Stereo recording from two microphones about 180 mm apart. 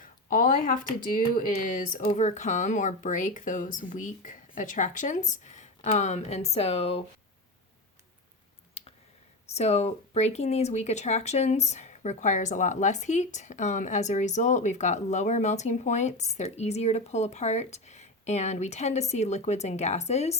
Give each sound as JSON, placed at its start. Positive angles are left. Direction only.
{"t": 0.0, "sound": "speech", "side_deg": 50}
{"t": 8.8, "sound": "a sound", "side_deg": 30}
{"t": 9.5, "sound": "speech", "side_deg": 35}